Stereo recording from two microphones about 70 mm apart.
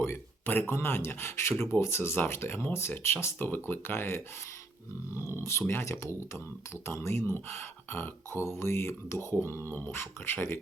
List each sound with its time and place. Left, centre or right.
0.0 s a sound: left
0.7 s speech: left
3.3 s speech: left
5.2 s speech: left